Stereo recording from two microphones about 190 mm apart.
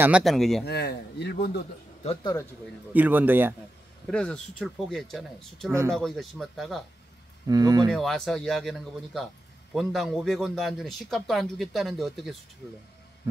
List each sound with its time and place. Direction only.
0.0 s a man's voice: 5° right (ahead or behind)
0.7 s speech: 60° left (ahead or behind)
2.9 s speech: 10° right (ahead or behind)
4.1 s a man's voice: 5° left (ahead or behind)
7.4 s speech: 20° right (ahead or behind)
7.9 s a man's voice: centre (ahead or behind)